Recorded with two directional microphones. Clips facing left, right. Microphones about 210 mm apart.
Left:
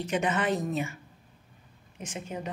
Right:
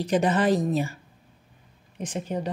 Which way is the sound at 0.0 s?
35° right (ahead or behind).